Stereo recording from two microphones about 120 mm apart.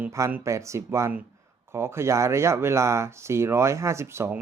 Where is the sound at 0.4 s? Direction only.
25° right (ahead or behind).